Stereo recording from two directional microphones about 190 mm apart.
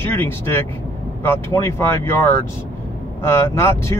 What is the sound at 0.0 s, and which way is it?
Speech, 10° left (ahead or behind).